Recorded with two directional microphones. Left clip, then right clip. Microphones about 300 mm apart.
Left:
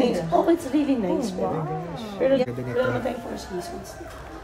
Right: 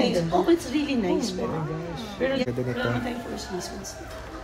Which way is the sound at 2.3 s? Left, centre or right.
Left.